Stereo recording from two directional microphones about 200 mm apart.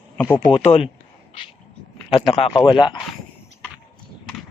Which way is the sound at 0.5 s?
30° left (ahead or behind).